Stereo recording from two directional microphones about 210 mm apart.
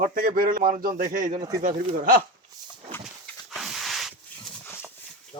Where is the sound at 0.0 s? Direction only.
40° right (ahead or behind).